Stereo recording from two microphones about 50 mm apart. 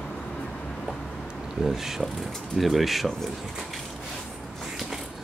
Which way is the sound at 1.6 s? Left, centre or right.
Centre.